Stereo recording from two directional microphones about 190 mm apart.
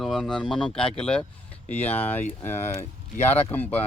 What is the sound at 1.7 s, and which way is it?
Speech, 35° left (ahead or behind).